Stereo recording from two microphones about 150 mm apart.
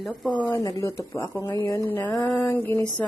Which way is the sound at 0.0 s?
Centre (ahead or behind).